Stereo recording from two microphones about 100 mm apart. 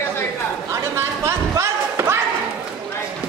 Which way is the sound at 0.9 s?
30° right (ahead or behind).